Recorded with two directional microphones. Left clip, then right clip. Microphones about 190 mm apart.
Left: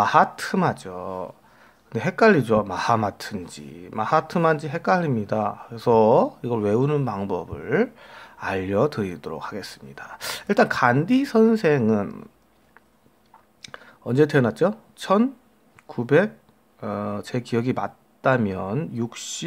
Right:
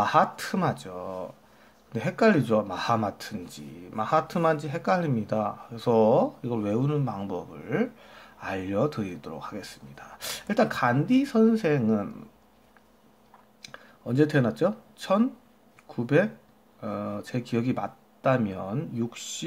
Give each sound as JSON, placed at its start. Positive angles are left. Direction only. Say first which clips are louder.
{"t": 0.0, "sound": "speech", "louder": "left 5 dB", "side_deg": 25}
{"t": 13.6, "sound": "speech", "louder": "left 5 dB", "side_deg": 30}